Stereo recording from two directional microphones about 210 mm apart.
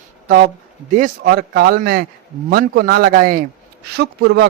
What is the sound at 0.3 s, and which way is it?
Speech, 45° right (ahead or behind).